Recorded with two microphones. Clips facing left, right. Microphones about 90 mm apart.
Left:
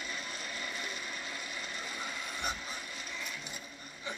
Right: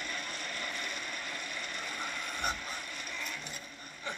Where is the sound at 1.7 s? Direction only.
55° right (ahead or behind).